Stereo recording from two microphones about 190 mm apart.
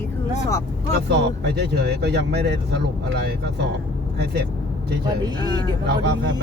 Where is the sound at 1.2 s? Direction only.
60° right (ahead or behind).